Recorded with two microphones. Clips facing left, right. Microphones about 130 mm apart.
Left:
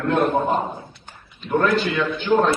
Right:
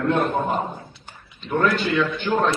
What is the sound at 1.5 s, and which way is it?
Speech, centre (ahead or behind).